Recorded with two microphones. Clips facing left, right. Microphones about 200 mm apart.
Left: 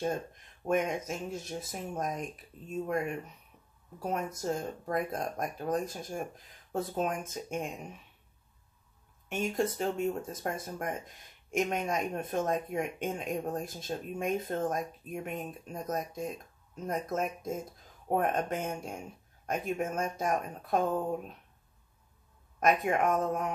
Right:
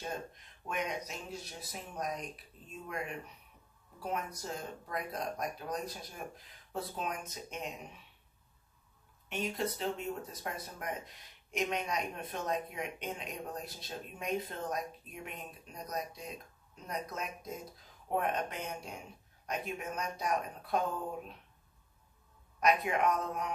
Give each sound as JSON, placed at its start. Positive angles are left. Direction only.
{"t": 0.7, "sound": "speech", "side_deg": 50}
{"t": 4.4, "sound": "speech", "side_deg": 45}
{"t": 9.3, "sound": "speech", "side_deg": 45}
{"t": 22.6, "sound": "speech", "side_deg": 50}